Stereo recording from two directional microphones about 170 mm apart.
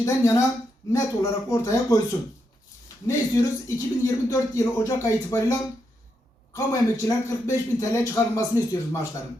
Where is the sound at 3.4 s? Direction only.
20° left (ahead or behind).